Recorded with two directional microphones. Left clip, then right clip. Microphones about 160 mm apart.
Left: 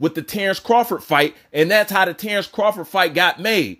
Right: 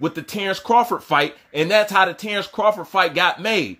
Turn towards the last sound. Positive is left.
turn(degrees=35)  # may be behind; listen again after turning